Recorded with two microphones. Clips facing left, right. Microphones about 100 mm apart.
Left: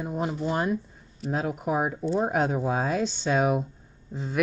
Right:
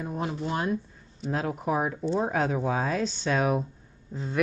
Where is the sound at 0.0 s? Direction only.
15° left (ahead or behind).